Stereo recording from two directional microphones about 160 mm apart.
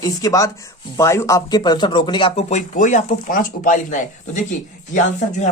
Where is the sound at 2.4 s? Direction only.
45° left (ahead or behind).